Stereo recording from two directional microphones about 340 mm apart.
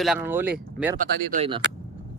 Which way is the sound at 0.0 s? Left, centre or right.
Centre.